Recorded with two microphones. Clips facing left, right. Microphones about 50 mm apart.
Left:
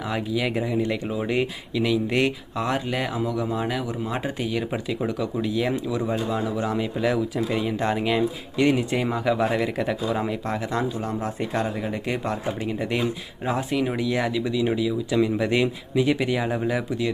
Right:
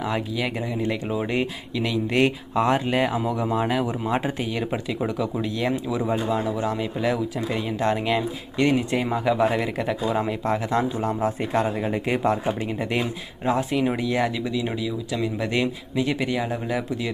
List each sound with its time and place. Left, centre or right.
0.1 s speech: centre
2.6 s speech: centre
4.1 s speech: centre
12.6 s speech: centre